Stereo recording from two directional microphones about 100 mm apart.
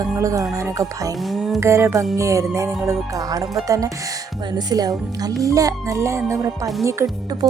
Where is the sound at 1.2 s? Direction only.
Centre (ahead or behind).